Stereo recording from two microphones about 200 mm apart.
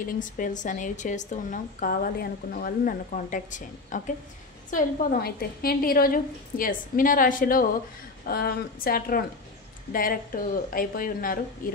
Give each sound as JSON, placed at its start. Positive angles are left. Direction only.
{"t": 0.0, "sound": "a woman's voice", "side_deg": 40}